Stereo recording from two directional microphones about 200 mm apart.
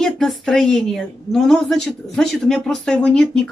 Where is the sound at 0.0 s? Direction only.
Centre (ahead or behind).